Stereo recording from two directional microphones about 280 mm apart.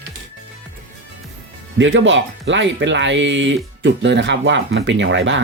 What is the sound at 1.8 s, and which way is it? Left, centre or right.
Speech, right.